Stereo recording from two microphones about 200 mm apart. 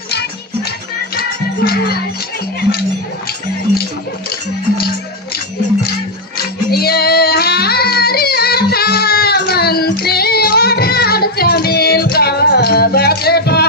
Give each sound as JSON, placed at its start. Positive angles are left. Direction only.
{"t": 0.1, "sound": "music", "side_deg": 55}
{"t": 6.3, "sound": "child singing", "side_deg": 50}